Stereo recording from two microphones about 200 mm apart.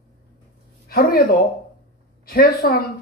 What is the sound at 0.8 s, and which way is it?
Speech, 50° left (ahead or behind).